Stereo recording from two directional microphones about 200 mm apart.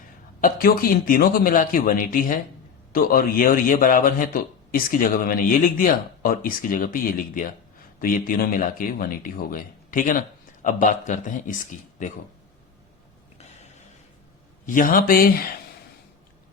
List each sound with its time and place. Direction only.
0.4 s a man's voice: 45° left (ahead or behind)
14.7 s a man's voice: 45° left (ahead or behind)